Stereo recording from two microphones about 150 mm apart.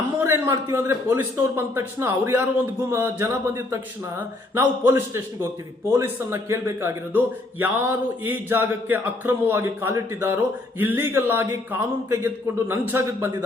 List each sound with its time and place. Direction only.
0.2 s speech: 15° right (ahead or behind)